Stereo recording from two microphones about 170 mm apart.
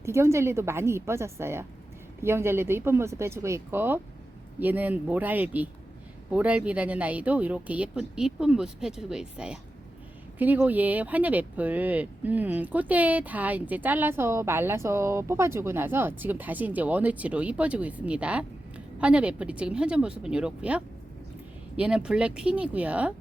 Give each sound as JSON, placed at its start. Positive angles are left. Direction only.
{"t": 0.0, "sound": "speech", "side_deg": -15}